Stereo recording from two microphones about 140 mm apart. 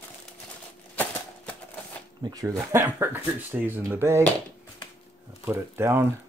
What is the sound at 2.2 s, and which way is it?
Speech, 25° right (ahead or behind).